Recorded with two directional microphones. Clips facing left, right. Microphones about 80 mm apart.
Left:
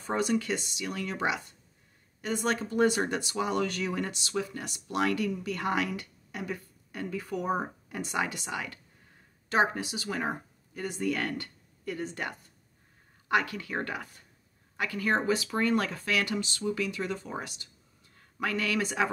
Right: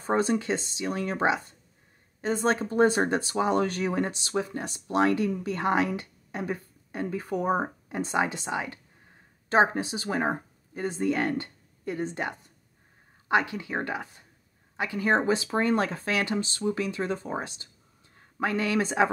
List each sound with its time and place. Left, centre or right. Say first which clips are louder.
0.0 s speech: right 3 dB; right